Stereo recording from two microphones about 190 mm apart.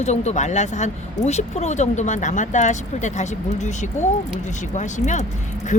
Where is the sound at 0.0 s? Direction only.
35° left (ahead or behind).